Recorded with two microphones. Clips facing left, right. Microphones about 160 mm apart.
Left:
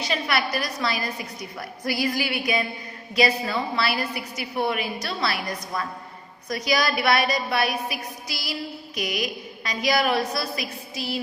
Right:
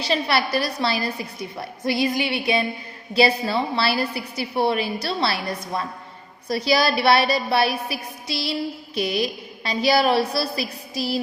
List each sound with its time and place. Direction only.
0.0 s a woman's voice: 30° right (ahead or behind)